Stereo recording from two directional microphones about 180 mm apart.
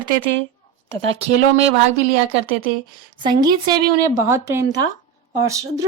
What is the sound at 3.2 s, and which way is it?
A woman's voice, 25° right (ahead or behind).